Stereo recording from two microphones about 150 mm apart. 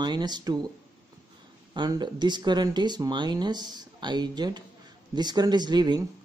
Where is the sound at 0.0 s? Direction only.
30° right (ahead or behind).